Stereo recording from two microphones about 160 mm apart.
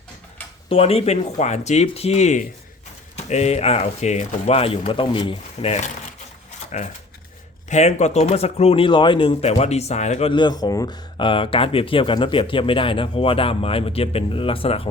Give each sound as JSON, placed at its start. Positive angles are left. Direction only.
{"t": 0.7, "sound": "speech", "side_deg": 40}